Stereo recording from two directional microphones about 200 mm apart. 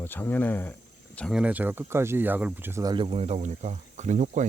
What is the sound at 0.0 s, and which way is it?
Speech, 10° left (ahead or behind).